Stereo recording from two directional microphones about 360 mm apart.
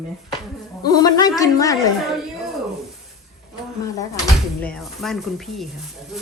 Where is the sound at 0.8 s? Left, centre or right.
Centre.